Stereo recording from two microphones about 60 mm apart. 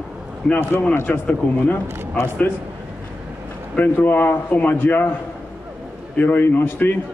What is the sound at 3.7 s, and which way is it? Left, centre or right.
A man's voice, left.